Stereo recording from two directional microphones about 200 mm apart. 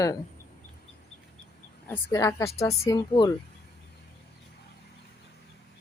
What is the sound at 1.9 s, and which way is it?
Speech, 15° left (ahead or behind).